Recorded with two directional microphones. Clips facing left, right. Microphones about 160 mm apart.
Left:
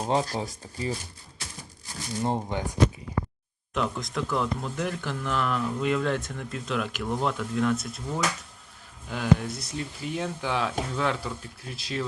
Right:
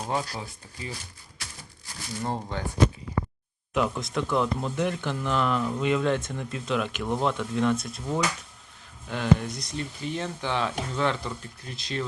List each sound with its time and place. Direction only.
0.0 s speech: 25° left (ahead or behind)
0.3 s speech: 40° left (ahead or behind)
2.2 s speech: 15° left (ahead or behind)
3.8 s speech: centre (ahead or behind)
9.0 s speech: 5° left (ahead or behind)